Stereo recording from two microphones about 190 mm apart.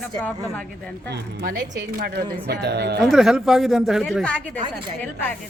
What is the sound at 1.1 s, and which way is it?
Speech, 55° right (ahead or behind).